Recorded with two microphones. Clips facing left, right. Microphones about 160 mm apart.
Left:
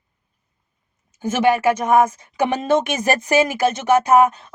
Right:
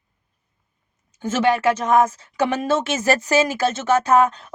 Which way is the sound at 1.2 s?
10° left (ahead or behind).